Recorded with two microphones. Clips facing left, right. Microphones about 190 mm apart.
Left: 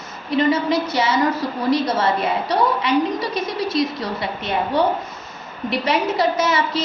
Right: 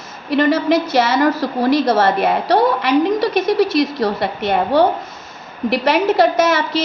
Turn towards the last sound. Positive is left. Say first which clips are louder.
# right 4 dB
turn(degrees=-90)